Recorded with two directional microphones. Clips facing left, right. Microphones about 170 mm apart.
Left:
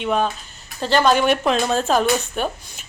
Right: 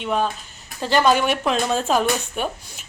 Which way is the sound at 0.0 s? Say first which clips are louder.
Left 2 dB; centre (ahead or behind).